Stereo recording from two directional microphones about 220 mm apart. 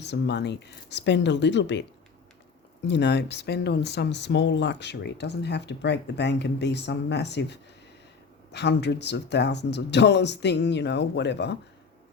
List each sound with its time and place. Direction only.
0.0 s speech: 50° left (ahead or behind)